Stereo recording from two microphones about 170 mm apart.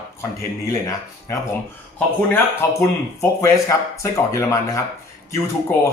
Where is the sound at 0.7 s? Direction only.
15° left (ahead or behind).